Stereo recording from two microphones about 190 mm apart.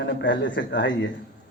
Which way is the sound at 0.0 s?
70° left (ahead or behind).